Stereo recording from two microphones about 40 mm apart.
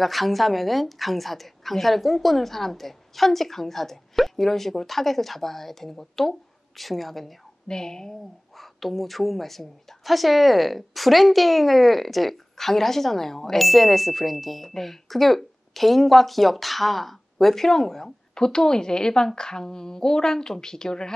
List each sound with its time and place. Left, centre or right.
0.0 s a woman's voice: centre
7.6 s a woman's voice: centre
8.5 s a woman's voice: centre